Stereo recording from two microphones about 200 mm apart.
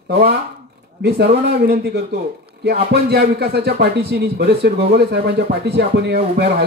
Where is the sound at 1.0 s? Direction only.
50° right (ahead or behind).